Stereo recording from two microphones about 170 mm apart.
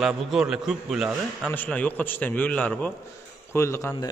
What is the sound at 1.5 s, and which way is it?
A man's voice, 10° left (ahead or behind).